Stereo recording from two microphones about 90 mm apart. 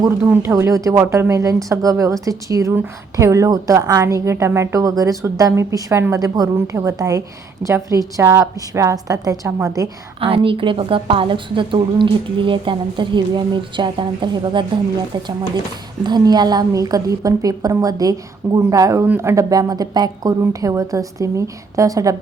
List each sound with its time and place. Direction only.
0.2 s speech: 20° right (ahead or behind)
0.6 s a woman's voice: 35° right (ahead or behind)
10.2 s a woman's voice: 90° right; by 14.6 s 60° right (ahead or behind)
16.0 s a woman's voice: 50° right (ahead or behind)